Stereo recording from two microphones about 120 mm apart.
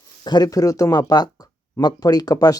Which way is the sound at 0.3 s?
35° left (ahead or behind).